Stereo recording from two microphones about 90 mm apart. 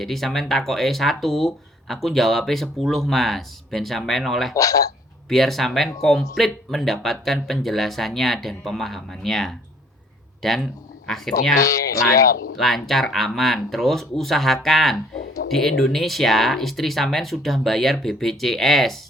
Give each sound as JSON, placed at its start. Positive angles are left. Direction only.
{"t": 0.0, "sound": "speech", "side_deg": 0}
{"t": 4.5, "sound": "speech", "side_deg": 40}
{"t": 5.3, "sound": "speech", "side_deg": 0}
{"t": 11.5, "sound": "speech", "side_deg": 35}
{"t": 12.5, "sound": "speech", "side_deg": 0}